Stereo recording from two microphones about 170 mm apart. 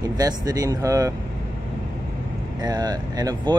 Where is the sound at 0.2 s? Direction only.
20° right (ahead or behind).